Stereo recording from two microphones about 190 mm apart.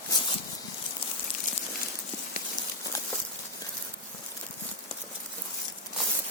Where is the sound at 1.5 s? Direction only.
45° left (ahead or behind).